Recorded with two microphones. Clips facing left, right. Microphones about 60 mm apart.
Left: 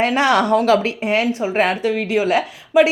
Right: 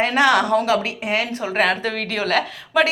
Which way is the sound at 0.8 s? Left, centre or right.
Left.